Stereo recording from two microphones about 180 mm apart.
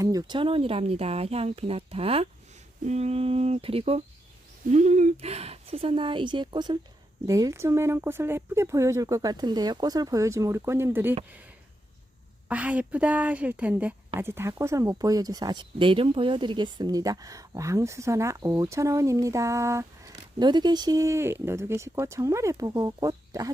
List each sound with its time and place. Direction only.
0.0 s speech: 20° right (ahead or behind)
12.5 s speech: 10° right (ahead or behind)